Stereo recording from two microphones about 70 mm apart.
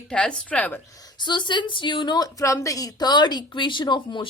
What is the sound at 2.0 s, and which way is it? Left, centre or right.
Speech, left.